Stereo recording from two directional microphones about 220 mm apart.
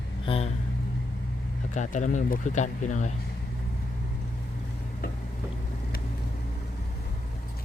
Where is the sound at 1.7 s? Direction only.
35° left (ahead or behind).